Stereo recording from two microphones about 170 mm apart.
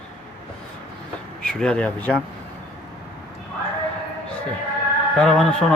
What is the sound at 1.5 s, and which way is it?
Speech, 5° left (ahead or behind).